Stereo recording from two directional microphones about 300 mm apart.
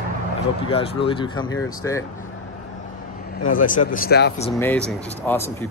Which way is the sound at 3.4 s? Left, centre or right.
Left.